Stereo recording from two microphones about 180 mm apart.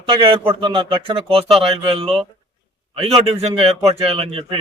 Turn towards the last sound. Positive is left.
turn(degrees=-30)  # may be behind; listen again after turning